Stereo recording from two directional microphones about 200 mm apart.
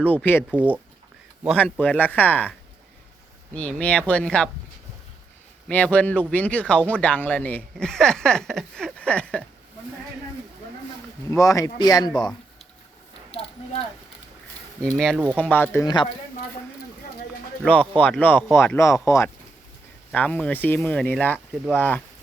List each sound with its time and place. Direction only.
0.0 s speech: 10° left (ahead or behind)
0.5 s speech: 5° right (ahead or behind)
5.6 s speech: 5° left (ahead or behind)
11.3 s speech: 15° left (ahead or behind)
14.8 s speech: 5° left (ahead or behind)
17.6 s speech: 5° left (ahead or behind)